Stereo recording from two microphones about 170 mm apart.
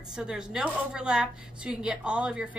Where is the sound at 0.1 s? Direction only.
5° right (ahead or behind).